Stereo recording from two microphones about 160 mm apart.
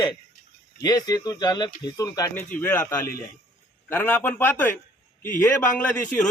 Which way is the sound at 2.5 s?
10° left (ahead or behind).